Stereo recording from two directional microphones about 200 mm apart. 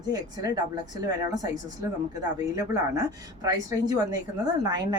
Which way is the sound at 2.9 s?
15° right (ahead or behind).